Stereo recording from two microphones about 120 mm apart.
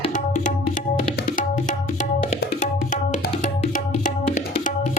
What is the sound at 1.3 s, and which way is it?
Tabla, 90° left.